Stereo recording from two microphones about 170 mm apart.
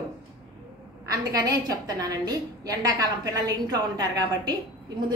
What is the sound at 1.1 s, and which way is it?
A woman's voice, 20° right (ahead or behind).